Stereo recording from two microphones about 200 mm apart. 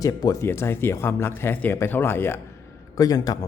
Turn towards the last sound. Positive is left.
turn(degrees=20)  # may be behind; listen again after turning